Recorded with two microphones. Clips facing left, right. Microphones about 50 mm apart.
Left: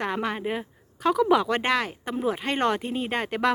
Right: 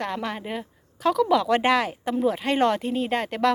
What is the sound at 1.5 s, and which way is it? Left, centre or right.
A woman's voice, centre.